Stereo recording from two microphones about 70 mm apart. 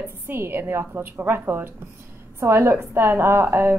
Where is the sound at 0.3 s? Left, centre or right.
Right.